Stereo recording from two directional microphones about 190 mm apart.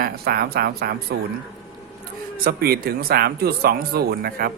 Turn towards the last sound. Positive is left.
turn(degrees=-55)  # may be behind; listen again after turning